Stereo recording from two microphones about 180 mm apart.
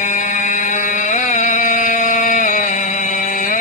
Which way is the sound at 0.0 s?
45° left (ahead or behind).